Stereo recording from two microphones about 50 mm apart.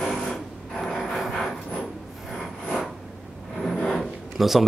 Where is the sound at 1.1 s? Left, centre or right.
Centre.